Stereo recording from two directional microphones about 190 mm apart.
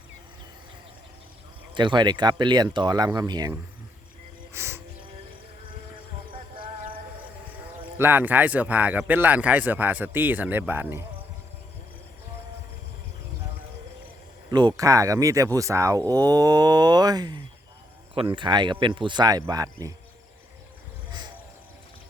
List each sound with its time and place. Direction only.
1.7 s speech: 25° right (ahead or behind)
4.5 s music: 15° right (ahead or behind)
6.3 s music: 25° right (ahead or behind)
7.9 s speech: 10° right (ahead or behind)
14.5 s speech: 20° right (ahead or behind)